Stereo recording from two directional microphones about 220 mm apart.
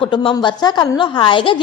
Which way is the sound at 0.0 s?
25° left (ahead or behind).